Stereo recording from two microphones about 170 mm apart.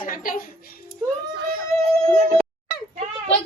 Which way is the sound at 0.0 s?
55° left (ahead or behind).